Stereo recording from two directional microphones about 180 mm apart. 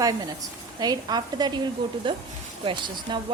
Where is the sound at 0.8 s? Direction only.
25° right (ahead or behind).